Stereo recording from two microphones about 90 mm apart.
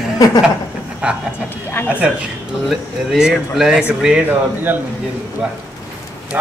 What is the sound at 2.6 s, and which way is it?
Speech, centre (ahead or behind).